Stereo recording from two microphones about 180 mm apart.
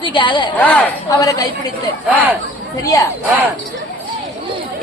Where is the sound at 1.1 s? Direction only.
20° left (ahead or behind).